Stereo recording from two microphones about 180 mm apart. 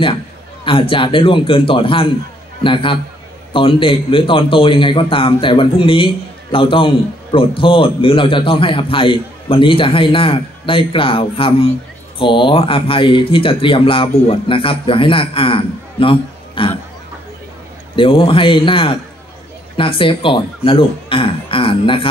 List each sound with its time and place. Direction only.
0.7 s a man's voice: 30° left (ahead or behind)
17.9 s a man's voice: 30° left (ahead or behind)